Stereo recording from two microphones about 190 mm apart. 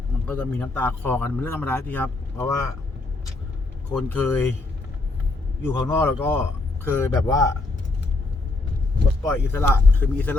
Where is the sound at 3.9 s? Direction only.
10° left (ahead or behind).